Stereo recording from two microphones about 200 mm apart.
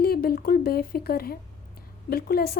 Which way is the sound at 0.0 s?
50° left (ahead or behind).